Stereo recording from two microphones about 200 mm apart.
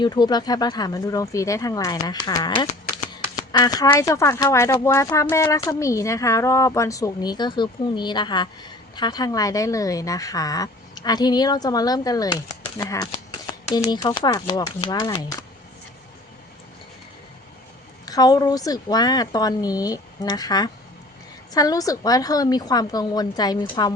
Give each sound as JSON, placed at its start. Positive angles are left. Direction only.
{"t": 0.0, "sound": "speech", "side_deg": 20}
{"t": 18.0, "sound": "speech", "side_deg": 20}